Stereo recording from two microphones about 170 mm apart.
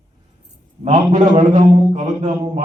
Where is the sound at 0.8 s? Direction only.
45° right (ahead or behind).